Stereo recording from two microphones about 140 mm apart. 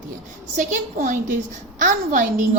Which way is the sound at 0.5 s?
70° right (ahead or behind).